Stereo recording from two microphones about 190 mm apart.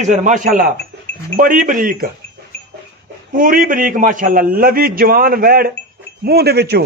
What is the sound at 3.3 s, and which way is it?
A man's voice, 45° right (ahead or behind).